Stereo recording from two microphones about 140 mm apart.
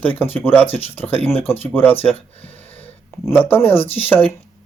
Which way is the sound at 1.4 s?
15° left (ahead or behind).